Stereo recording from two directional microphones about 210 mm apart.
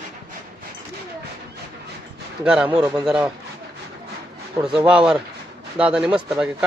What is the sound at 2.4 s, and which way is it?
Speech, 5° right (ahead or behind).